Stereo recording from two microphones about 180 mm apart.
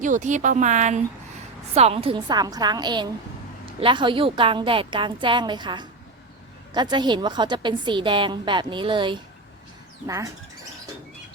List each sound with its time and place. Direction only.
0.0 s a woman's voice: 45° right (ahead or behind); by 10.3 s 15° right (ahead or behind)